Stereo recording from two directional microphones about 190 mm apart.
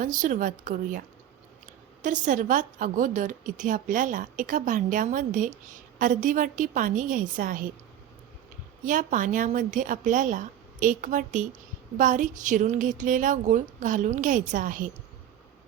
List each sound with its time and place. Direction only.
0.0 s a woman's voice: 45° right (ahead or behind)
8.8 s a woman's voice: 45° right (ahead or behind)